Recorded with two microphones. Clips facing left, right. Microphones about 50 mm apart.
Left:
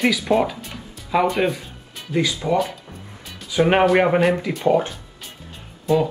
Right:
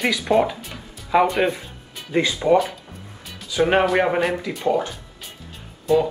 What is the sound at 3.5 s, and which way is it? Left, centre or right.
Speech, centre.